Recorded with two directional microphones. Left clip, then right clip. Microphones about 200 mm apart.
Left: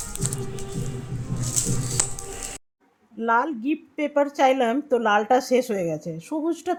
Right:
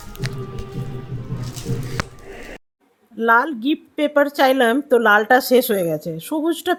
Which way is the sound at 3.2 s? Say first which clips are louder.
Right 6 dB; 20° right (ahead or behind).